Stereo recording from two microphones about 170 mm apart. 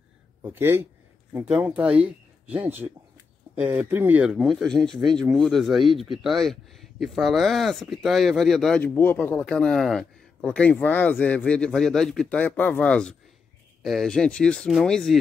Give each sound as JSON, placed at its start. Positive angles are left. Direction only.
{"t": 0.4, "sound": "speech", "side_deg": -15}